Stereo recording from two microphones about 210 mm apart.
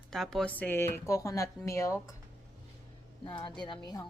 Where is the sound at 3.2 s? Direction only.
20° left (ahead or behind).